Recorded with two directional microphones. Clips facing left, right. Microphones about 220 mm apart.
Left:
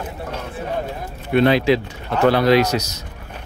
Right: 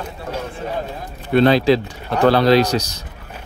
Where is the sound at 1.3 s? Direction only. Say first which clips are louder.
Right 2 dB; 35° right (ahead or behind).